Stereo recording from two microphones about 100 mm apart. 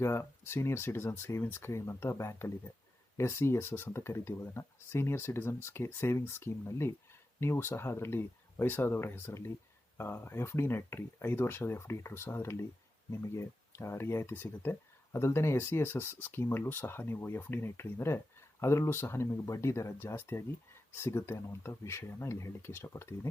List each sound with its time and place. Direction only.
0.0 s speech: 25° left (ahead or behind)